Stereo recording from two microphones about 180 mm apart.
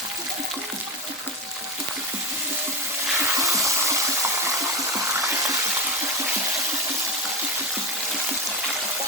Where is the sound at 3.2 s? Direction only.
15° right (ahead or behind).